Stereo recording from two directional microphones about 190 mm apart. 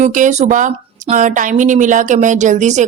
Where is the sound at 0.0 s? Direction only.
40° right (ahead or behind).